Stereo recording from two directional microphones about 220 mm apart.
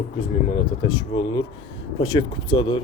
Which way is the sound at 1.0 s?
20° left (ahead or behind).